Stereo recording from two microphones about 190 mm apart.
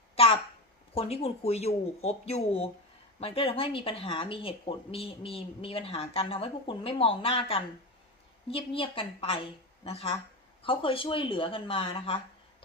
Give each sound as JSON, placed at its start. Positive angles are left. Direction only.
{"t": 0.9, "sound": "speech", "side_deg": 30}